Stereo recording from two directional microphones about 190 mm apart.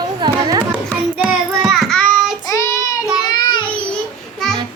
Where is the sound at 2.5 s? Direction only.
15° left (ahead or behind).